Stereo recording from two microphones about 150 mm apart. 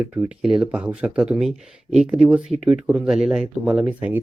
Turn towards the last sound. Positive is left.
turn(degrees=-10)  # may be behind; listen again after turning